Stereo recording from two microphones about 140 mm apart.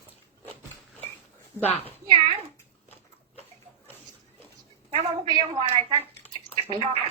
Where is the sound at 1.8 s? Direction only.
45° right (ahead or behind).